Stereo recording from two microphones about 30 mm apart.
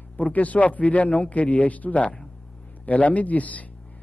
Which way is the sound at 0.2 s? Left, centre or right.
Left.